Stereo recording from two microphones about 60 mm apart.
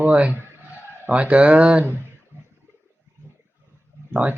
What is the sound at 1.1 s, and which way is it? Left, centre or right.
Speech, right.